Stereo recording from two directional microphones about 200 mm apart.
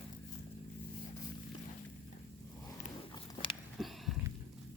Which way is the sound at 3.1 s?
20° left (ahead or behind).